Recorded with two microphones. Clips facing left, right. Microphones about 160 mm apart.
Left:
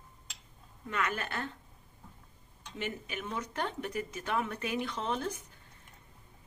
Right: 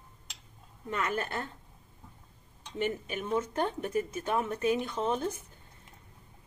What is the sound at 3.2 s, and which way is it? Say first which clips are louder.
Speech: right 7 dB; 25° right (ahead or behind).